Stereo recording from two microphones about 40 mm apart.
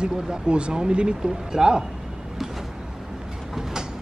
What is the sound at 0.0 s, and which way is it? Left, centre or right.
Speech, right.